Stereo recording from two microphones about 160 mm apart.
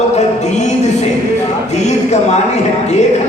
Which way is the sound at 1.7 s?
45° left (ahead or behind).